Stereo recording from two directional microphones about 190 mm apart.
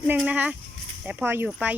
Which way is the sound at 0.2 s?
5° right (ahead or behind).